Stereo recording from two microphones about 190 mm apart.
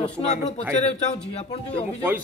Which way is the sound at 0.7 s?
30° left (ahead or behind).